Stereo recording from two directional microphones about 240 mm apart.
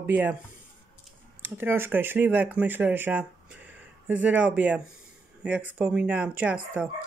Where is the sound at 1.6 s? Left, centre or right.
Centre.